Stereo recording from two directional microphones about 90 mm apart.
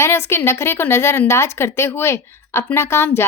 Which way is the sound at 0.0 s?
30° left (ahead or behind).